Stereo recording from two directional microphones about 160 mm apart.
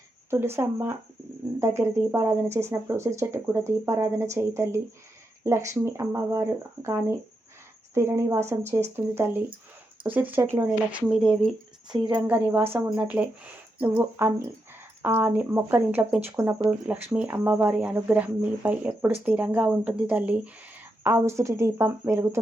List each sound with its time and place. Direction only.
0.3 s speech: 15° right (ahead or behind)
11.9 s speech: 30° right (ahead or behind)
12.1 s speech: 10° right (ahead or behind)